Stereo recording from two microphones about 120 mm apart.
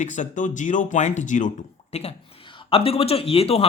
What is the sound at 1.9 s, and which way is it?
Speech, 60° left (ahead or behind).